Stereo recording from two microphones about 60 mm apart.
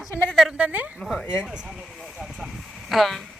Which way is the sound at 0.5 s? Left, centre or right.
Right.